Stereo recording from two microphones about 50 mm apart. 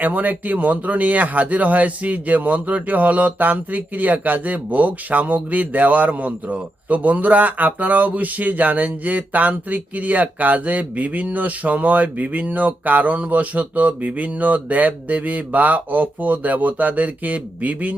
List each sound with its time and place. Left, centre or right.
0.0 s speech: right